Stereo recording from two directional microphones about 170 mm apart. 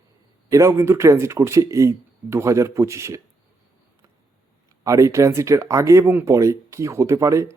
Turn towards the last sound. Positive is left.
turn(degrees=-20)  # may be behind; listen again after turning